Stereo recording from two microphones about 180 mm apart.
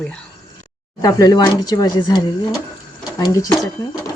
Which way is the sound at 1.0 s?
20° left (ahead or behind).